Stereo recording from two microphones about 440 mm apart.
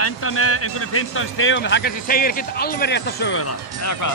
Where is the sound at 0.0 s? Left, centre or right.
Left.